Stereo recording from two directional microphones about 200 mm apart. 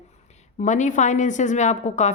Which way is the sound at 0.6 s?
35° left (ahead or behind).